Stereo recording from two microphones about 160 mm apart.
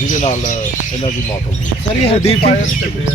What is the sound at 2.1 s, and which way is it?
Speech, 40° left (ahead or behind).